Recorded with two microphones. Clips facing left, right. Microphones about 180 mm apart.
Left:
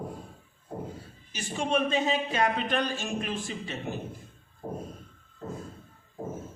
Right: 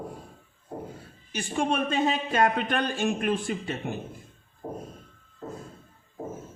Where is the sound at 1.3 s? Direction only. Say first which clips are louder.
Right 1 dB; 55° right (ahead or behind).